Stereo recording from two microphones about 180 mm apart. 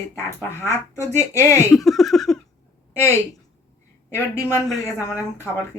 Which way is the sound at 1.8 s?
Centre (ahead or behind).